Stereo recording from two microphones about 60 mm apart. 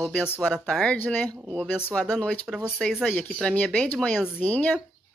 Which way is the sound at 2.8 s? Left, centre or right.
Centre.